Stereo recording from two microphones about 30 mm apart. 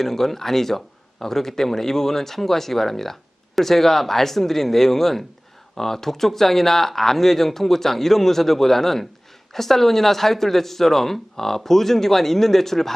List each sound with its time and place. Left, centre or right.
0.0 s speech: centre